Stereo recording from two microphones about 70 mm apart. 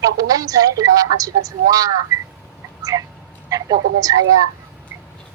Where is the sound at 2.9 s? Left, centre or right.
Right.